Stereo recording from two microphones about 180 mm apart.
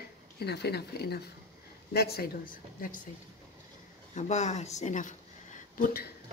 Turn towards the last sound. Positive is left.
turn(degrees=50)  # may be behind; listen again after turning